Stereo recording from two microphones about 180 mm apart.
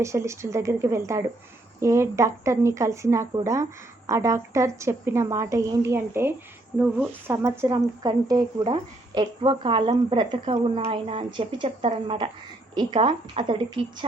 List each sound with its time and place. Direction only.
0.0 s speech: 15° right (ahead or behind)